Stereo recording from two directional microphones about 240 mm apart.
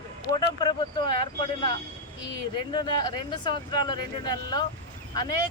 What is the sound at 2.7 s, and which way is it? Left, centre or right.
Speech, centre.